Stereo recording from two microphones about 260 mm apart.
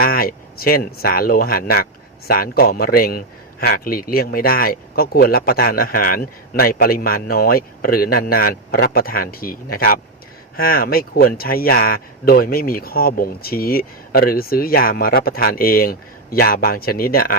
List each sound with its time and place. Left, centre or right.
0.0 s speech: left